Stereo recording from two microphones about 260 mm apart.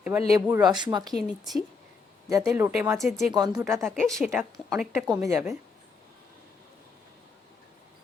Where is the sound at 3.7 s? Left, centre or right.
Centre.